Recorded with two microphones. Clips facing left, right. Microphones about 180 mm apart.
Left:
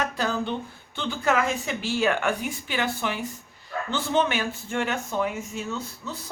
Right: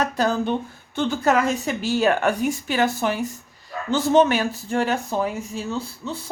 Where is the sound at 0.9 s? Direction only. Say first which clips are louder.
Right 5 dB; 45° right (ahead or behind).